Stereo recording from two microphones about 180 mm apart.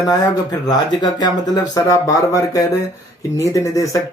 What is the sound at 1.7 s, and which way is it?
Speech, 20° left (ahead or behind).